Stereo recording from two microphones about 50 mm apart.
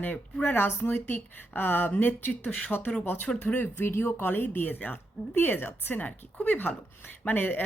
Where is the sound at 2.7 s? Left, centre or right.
Left.